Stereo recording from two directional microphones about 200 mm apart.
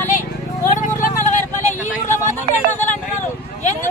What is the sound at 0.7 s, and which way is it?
Vehicle, 40° left (ahead or behind).